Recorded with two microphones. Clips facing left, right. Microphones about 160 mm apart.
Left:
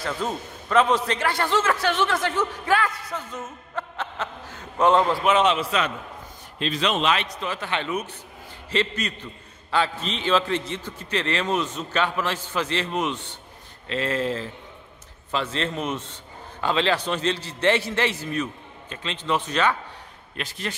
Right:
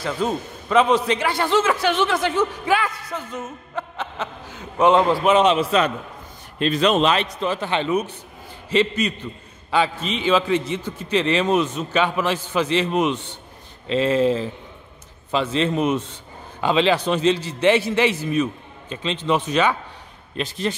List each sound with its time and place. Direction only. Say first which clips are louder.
0.2 s a man's voice: right 5 dB; 15° right (ahead or behind)
2.3 s a man's voice: right 3 dB; 10° right (ahead or behind)
5.7 s a man's voice: right 6 dB; 35° right (ahead or behind)
6.6 s a man's voice: right 6 dB; 50° right (ahead or behind)
7.4 s a man's voice: right 6 dB; 25° right (ahead or behind)
20.3 s speech: right 7 dB; 25° right (ahead or behind)